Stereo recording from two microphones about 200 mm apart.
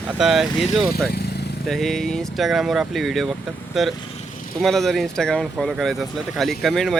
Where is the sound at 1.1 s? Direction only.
55° left (ahead or behind).